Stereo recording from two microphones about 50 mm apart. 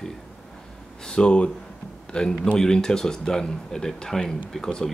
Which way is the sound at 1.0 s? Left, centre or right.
Centre.